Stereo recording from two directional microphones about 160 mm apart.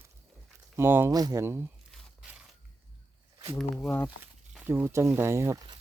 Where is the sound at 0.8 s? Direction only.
15° right (ahead or behind).